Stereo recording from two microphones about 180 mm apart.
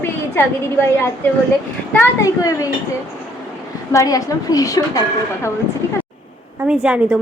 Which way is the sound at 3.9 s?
20° left (ahead or behind).